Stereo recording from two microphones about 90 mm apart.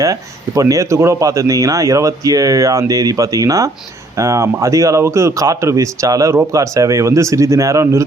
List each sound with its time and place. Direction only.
0.0 s speech: 40° right (ahead or behind)